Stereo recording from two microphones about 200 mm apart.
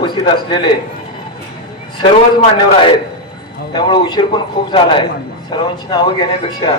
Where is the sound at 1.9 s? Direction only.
25° left (ahead or behind).